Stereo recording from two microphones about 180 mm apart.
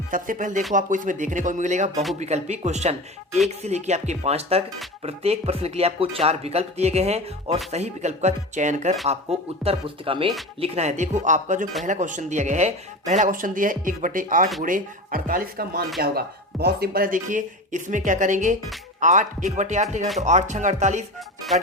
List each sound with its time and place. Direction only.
0.1 s speech: 45° right (ahead or behind)